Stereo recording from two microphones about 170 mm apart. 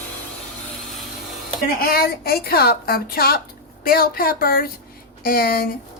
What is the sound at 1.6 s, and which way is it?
A woman's voice, 60° left (ahead or behind).